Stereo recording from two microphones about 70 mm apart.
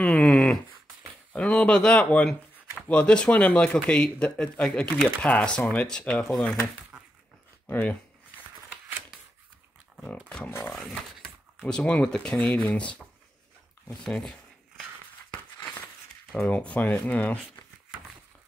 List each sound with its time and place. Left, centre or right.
0.0 s a sound: centre
1.3 s speech: centre
6.9 s dog: centre
7.6 s speech: left
10.8 s speech: centre
16.3 s speech: centre